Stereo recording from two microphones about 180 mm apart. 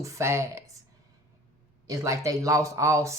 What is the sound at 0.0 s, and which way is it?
Speech, 15° right (ahead or behind).